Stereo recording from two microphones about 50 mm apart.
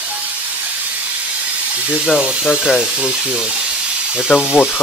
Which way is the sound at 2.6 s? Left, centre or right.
Centre.